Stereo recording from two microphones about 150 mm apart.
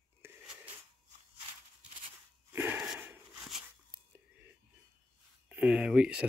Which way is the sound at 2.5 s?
10° right (ahead or behind).